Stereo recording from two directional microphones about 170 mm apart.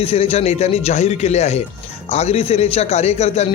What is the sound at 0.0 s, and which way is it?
Speech, 35° left (ahead or behind).